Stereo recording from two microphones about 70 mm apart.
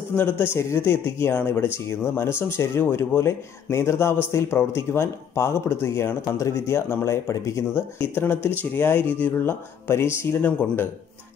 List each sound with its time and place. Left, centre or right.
0.1 s speech: left
7.3 s speech: left
8.0 s speech: left
10.4 s speech: left